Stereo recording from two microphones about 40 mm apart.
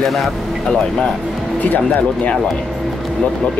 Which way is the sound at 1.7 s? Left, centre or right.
Left.